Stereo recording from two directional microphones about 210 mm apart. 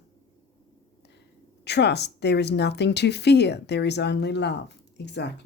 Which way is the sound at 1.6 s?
55° left (ahead or behind).